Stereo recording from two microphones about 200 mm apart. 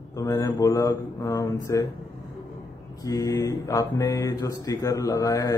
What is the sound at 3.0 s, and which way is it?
Speech, 15° left (ahead or behind).